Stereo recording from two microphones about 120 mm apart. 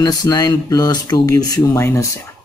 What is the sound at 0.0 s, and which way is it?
Speech, 35° left (ahead or behind).